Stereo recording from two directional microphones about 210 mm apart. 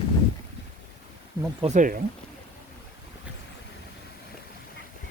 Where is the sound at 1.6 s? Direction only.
35° right (ahead or behind).